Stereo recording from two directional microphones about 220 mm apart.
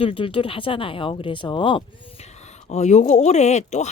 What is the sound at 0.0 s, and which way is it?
Speech, 25° left (ahead or behind).